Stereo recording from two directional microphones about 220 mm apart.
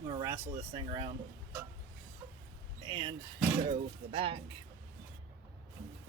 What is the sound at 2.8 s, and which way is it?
Speech, 20° right (ahead or behind).